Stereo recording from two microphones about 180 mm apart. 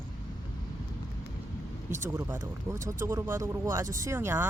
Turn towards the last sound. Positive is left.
turn(degrees=-15)  # may be behind; listen again after turning